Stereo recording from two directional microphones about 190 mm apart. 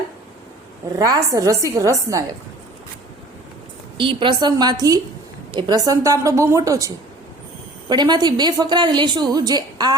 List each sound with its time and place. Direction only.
0.9 s a woman's voice: 20° right (ahead or behind)
3.9 s a woman's voice: 25° right (ahead or behind)